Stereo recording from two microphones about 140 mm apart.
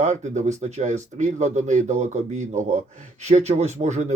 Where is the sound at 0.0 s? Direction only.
55° right (ahead or behind).